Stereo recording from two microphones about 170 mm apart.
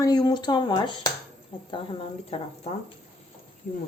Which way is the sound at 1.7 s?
35° left (ahead or behind).